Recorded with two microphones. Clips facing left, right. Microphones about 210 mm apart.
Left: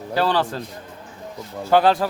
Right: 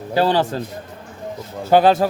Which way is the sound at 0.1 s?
15° right (ahead or behind).